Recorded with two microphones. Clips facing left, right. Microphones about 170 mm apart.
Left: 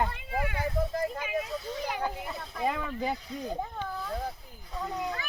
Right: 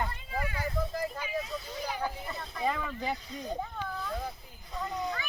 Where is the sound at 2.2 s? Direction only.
5° left (ahead or behind).